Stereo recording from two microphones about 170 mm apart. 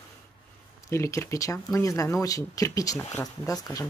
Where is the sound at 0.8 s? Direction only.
15° left (ahead or behind).